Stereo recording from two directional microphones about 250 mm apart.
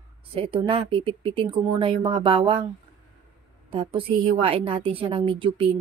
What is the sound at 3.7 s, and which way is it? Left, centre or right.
A woman's voice, right.